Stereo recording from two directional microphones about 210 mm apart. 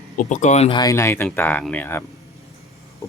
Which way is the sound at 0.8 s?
15° left (ahead or behind).